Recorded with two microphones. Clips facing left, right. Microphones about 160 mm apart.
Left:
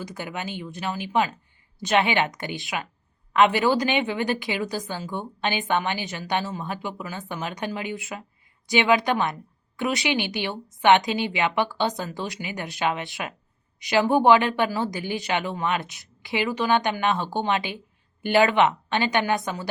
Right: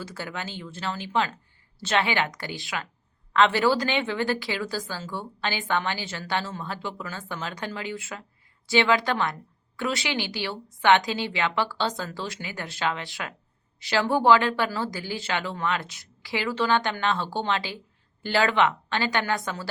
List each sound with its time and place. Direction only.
0.0 s a woman's voice: 15° left (ahead or behind)